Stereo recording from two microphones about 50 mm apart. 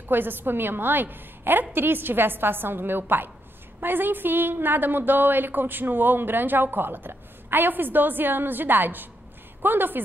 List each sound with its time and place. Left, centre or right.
0.1 s a woman's voice: right